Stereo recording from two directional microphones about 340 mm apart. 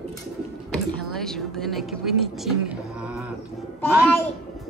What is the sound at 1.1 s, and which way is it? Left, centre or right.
Speech, centre.